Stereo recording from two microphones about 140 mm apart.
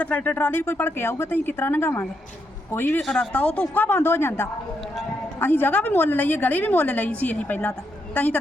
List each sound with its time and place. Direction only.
0.0 s a woman's voice: 10° left (ahead or behind)
3.0 s a woman's voice: 5° left (ahead or behind)